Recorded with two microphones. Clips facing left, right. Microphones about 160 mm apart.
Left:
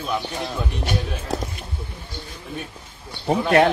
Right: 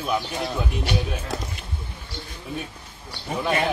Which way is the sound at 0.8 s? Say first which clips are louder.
Even; 45° left (ahead or behind).